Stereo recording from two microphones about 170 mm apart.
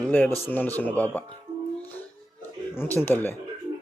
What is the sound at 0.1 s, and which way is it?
Speech, 10° left (ahead or behind).